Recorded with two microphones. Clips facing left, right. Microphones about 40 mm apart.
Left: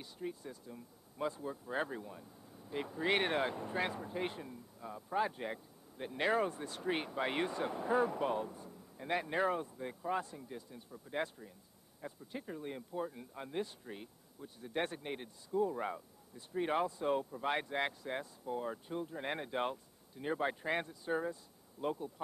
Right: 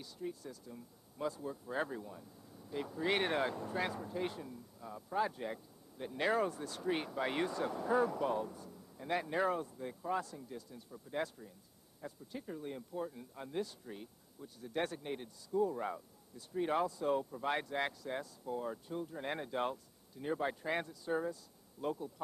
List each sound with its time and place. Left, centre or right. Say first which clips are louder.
0.0 s speech: even; left